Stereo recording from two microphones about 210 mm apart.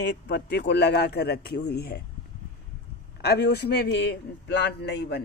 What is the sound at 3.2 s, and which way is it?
Speech, 50° left (ahead or behind).